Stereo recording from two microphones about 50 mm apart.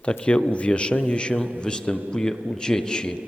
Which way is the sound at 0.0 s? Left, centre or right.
Left.